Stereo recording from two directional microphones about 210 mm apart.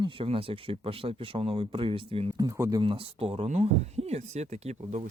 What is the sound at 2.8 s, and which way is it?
Speech, 25° right (ahead or behind).